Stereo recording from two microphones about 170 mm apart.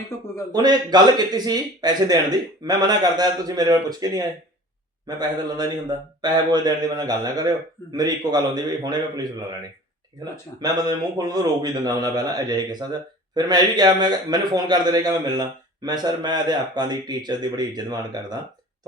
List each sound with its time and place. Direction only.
0.5 s speech: 25° right (ahead or behind)
6.2 s speech: 25° right (ahead or behind)
10.6 s speech: 25° right (ahead or behind)